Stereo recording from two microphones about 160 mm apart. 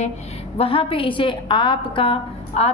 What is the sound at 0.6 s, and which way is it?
A woman's voice, 35° left (ahead or behind).